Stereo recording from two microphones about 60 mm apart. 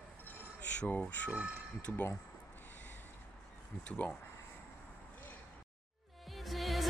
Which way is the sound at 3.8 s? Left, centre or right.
Left.